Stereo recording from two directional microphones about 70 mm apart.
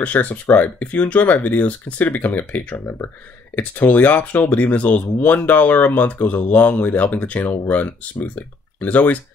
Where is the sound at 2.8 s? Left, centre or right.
Left.